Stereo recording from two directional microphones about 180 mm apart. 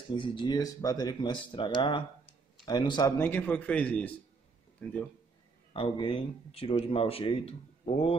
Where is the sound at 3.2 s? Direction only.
10° left (ahead or behind).